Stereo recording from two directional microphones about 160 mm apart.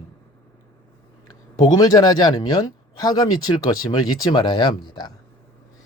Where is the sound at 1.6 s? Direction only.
25° left (ahead or behind).